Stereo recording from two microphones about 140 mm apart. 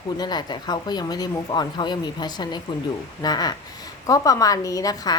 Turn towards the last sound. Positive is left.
turn(degrees=25)  # may be behind; listen again after turning